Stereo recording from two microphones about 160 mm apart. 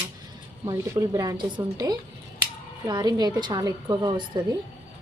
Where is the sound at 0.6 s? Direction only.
20° right (ahead or behind).